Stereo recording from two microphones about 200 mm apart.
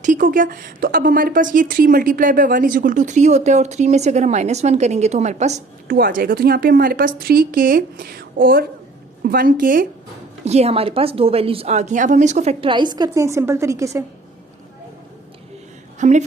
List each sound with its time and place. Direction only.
0.0 s a woman's voice: 40° right (ahead or behind)
10.4 s a woman's voice: 30° right (ahead or behind); by 14.0 s 15° right (ahead or behind)
16.0 s a woman's voice: 35° right (ahead or behind)